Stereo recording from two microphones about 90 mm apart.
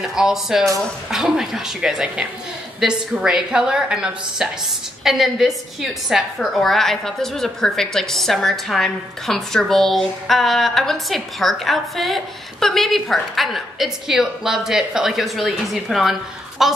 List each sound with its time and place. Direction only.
0.1 s a woman's voice: 5° right (ahead or behind)